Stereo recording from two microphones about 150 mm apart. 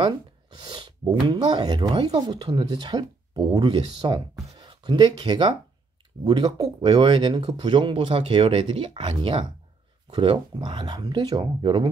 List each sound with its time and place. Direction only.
0.0 s speech: 30° right (ahead or behind)